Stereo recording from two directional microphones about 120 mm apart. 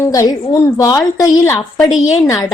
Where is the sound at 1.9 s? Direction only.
Centre (ahead or behind).